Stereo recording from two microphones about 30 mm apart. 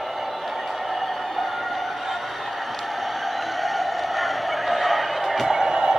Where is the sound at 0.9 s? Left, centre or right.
Centre.